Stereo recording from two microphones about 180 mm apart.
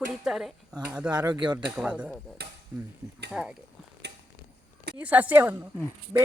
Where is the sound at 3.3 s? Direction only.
5° right (ahead or behind).